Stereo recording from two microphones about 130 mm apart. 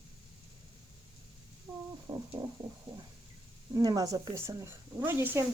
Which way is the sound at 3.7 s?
25° right (ahead or behind).